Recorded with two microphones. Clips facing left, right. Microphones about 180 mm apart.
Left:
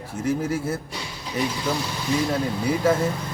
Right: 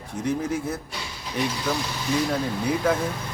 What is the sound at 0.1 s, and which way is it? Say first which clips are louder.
Speech: left 1 dB; 5° left (ahead or behind).